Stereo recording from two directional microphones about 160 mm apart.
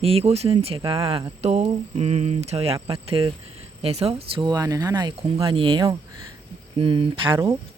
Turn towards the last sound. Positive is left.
turn(degrees=-30)  # may be behind; listen again after turning